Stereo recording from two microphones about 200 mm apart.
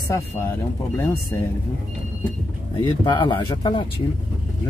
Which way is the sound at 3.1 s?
25° left (ahead or behind).